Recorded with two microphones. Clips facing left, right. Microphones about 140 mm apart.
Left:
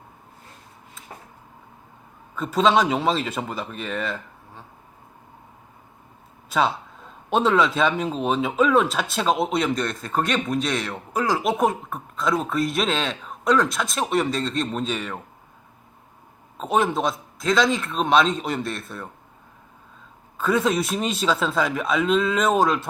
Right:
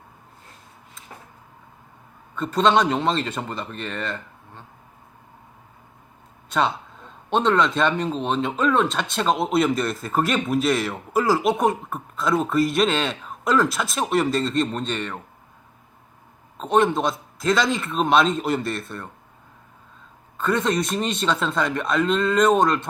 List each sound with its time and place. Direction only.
2.3 s speech: 5° left (ahead or behind)
6.5 s speech: centre (ahead or behind)
16.6 s speech: 5° left (ahead or behind)
20.4 s speech: 5° left (ahead or behind)